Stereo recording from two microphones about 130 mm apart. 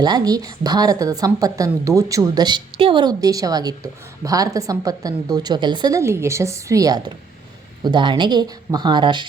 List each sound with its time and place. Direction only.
0.0 s a woman's voice: 30° right (ahead or behind)